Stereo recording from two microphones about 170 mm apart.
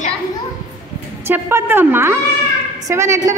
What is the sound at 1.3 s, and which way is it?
A woman's voice, 15° right (ahead or behind).